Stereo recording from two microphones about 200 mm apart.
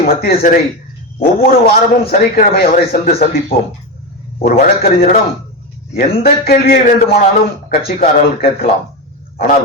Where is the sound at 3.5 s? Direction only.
50° left (ahead or behind).